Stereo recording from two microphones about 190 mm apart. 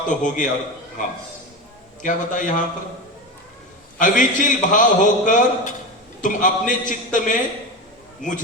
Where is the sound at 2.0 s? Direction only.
40° left (ahead or behind).